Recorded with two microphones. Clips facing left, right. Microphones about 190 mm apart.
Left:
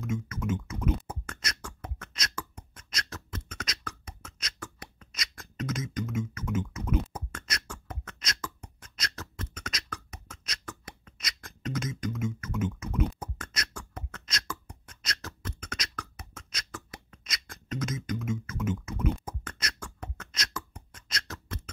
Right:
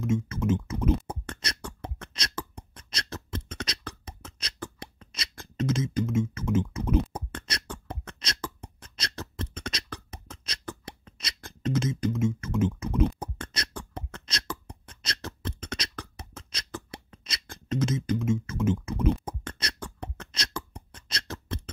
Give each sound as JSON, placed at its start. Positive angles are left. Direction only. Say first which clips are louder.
{"t": 0.0, "sound": "speech", "louder": "right 6 dB", "side_deg": -30}
{"t": 1.0, "sound": "beatboxing", "louder": "right 3 dB", "side_deg": -30}